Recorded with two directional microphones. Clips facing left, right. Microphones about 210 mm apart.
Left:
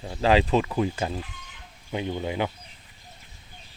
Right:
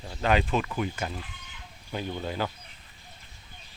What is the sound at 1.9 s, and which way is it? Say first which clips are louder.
Speech: left 4 dB; 15° left (ahead or behind).